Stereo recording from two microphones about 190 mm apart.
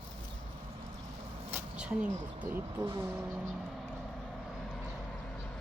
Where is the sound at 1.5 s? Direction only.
5° right (ahead or behind).